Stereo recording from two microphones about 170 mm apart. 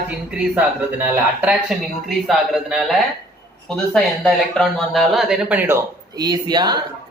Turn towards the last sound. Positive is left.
turn(degrees=-25)  # may be behind; listen again after turning